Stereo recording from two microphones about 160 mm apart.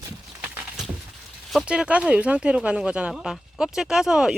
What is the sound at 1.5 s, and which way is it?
Speech, 5° right (ahead or behind).